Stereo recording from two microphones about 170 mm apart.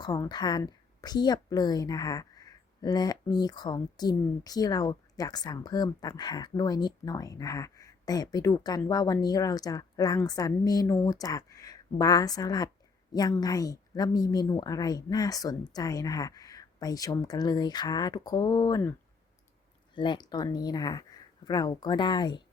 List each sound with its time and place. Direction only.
0.0 s a woman's voice: 25° left (ahead or behind)
20.0 s a woman's voice: 25° left (ahead or behind)